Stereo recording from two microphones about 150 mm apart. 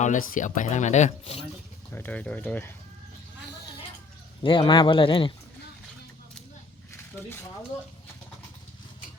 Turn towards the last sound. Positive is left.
turn(degrees=15)  # may be behind; listen again after turning